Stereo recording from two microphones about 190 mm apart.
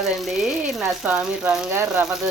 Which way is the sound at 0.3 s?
5° right (ahead or behind).